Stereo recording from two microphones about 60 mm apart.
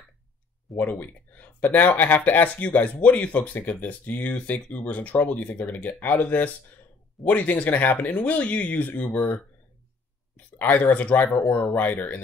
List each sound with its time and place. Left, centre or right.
0.7 s speech: left